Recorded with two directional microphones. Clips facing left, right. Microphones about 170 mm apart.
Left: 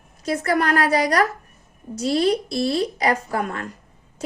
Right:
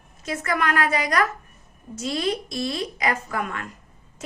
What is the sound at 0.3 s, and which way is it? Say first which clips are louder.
A woman's voice: left 5 dB; 35° left (ahead or behind).